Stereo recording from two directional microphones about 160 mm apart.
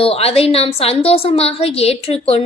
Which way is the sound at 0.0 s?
40° left (ahead or behind).